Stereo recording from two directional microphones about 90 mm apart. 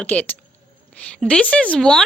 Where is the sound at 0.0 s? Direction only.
15° left (ahead or behind).